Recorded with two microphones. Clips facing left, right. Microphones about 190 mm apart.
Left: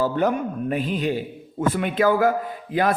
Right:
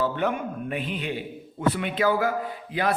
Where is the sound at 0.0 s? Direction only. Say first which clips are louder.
Left 4 dB; 40° left (ahead or behind).